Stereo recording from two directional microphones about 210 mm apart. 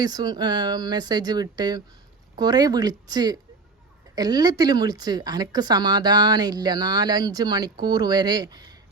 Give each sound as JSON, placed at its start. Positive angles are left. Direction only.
{"t": 0.0, "sound": "speech", "side_deg": -20}